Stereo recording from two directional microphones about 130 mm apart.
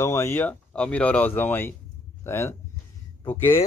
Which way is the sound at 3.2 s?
40° left (ahead or behind).